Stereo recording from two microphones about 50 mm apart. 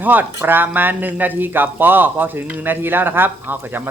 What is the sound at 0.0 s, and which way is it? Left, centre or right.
Speech, right.